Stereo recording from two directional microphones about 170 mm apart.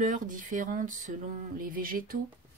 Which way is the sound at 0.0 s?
50° right (ahead or behind).